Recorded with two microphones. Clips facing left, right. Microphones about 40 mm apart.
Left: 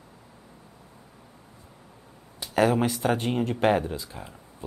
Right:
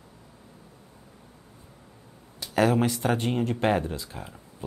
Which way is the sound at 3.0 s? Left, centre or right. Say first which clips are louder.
Left 1 dB; centre.